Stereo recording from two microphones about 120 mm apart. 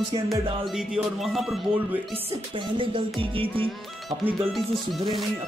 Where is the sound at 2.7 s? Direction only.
45° right (ahead or behind).